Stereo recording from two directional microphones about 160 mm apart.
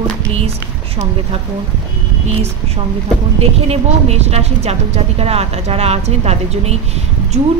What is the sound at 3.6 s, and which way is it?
A woman's voice, 40° right (ahead or behind).